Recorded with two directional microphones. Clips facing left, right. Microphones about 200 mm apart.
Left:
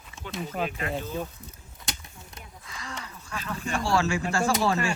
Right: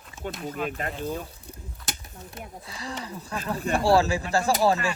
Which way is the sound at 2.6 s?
35° right (ahead or behind).